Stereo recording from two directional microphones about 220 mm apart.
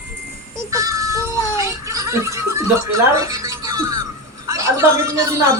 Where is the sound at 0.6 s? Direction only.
15° right (ahead or behind).